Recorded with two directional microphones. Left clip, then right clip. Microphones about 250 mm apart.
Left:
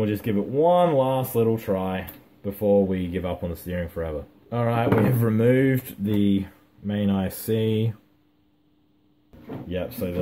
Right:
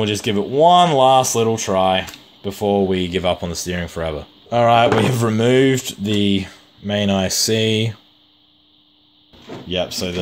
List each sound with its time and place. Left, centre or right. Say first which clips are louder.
0.0 s speech: right 6 dB; right
9.7 s speech: right 8 dB; right